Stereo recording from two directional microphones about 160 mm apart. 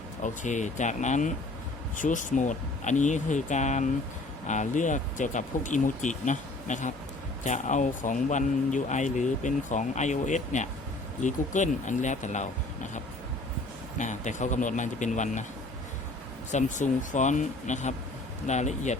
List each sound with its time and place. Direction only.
0.2 s speech: 50° left (ahead or behind)
14.0 s speech: 50° left (ahead or behind)
16.5 s speech: 50° left (ahead or behind)